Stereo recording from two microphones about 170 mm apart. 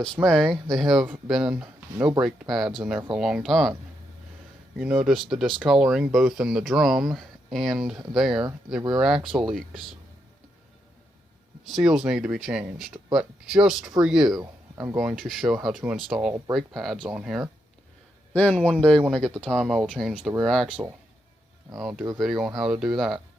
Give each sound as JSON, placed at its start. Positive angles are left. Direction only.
{"t": 0.3, "sound": "speech", "side_deg": 0}
{"t": 4.8, "sound": "speech", "side_deg": -10}
{"t": 11.7, "sound": "speech", "side_deg": -5}
{"t": 14.3, "sound": "speech", "side_deg": -25}
{"t": 14.9, "sound": "speech", "side_deg": 0}
{"t": 18.3, "sound": "speech", "side_deg": 10}
{"t": 21.8, "sound": "speech", "side_deg": 0}